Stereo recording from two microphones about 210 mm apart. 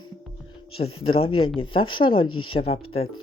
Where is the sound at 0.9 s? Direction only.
25° left (ahead or behind).